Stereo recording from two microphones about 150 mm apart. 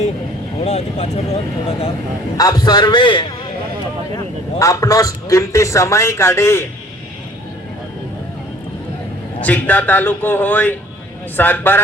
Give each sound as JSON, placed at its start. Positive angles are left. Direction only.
{"t": 0.6, "sound": "speech", "side_deg": 45}
{"t": 2.4, "sound": "a man's voice", "side_deg": 25}
{"t": 4.6, "sound": "a man's voice", "side_deg": 20}
{"t": 9.4, "sound": "a man's voice", "side_deg": 10}